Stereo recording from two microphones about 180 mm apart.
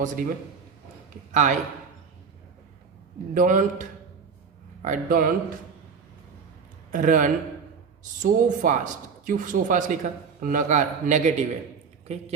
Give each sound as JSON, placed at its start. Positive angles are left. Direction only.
{"t": 1.3, "sound": "a man's voice", "side_deg": -45}
{"t": 3.3, "sound": "speech", "side_deg": -45}
{"t": 6.9, "sound": "speech", "side_deg": -45}